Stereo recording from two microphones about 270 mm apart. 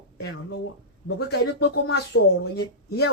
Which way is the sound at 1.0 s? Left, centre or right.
Left.